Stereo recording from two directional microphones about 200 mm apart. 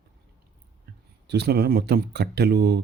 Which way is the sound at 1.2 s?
55° right (ahead or behind).